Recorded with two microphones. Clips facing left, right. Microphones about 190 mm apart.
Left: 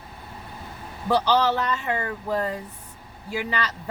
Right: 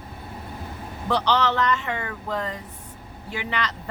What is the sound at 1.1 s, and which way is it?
Speech, 10° left (ahead or behind).